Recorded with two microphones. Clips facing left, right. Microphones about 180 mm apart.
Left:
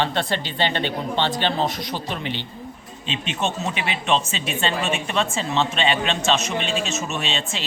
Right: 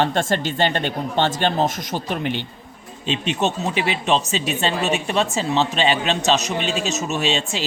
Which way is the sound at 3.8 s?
40° right (ahead or behind).